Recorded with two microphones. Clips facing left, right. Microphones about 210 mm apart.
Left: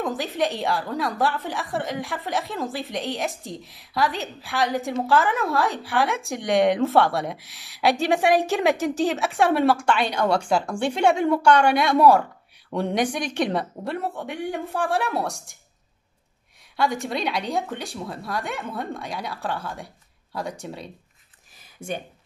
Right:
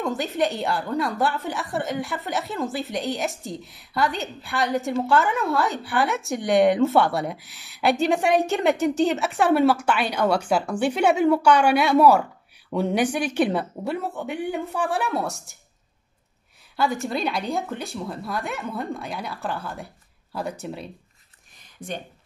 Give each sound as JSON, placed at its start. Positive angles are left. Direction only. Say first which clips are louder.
{"t": 0.0, "sound": "a woman's voice", "louder": "right 1 dB", "side_deg": 0}
{"t": 16.7, "sound": "a woman's voice", "louder": "even", "side_deg": 0}
{"t": 21.8, "sound": "speech", "louder": "left 2 dB", "side_deg": 25}